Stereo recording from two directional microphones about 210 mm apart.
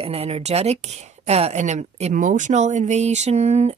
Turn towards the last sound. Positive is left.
turn(degrees=-30)  # may be behind; listen again after turning